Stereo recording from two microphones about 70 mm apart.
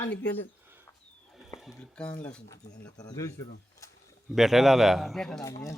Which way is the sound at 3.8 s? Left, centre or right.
Left.